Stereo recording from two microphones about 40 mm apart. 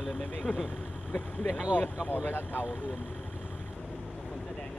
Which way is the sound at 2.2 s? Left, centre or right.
Left.